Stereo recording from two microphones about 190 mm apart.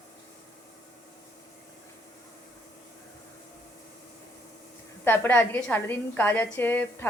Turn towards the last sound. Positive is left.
turn(degrees=10)  # may be behind; listen again after turning